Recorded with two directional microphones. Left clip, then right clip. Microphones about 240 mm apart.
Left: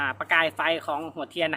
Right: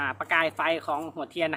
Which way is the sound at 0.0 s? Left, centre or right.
Centre.